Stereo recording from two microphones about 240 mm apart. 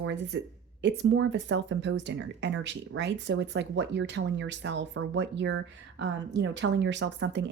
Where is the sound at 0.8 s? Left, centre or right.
Right.